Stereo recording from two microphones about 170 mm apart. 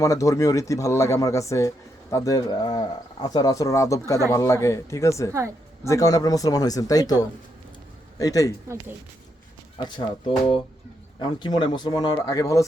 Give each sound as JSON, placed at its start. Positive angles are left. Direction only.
{"t": 0.0, "sound": "speech", "side_deg": 20}
{"t": 10.2, "sound": "speech", "side_deg": 30}